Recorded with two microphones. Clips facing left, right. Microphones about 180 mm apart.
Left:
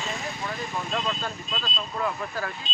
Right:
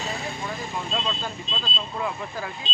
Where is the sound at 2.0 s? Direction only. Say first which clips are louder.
Left 1 dB; 15° right (ahead or behind).